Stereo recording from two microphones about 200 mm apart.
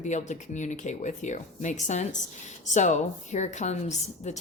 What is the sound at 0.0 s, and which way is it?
A woman's voice, 35° left (ahead or behind).